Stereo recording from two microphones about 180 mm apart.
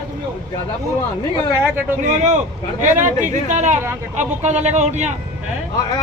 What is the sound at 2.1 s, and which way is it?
A man's voice, 40° right (ahead or behind).